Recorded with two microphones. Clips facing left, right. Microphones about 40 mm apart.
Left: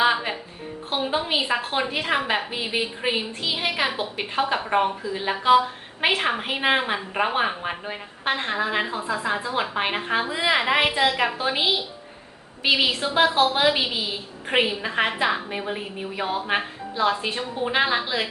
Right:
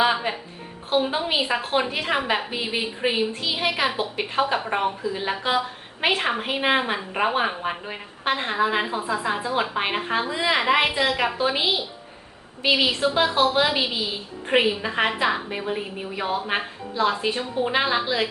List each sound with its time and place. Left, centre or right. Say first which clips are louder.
0.0 s music: even; centre
1.0 s a woman's voice: even; centre
12.6 s a woman's voice: right 1 dB; centre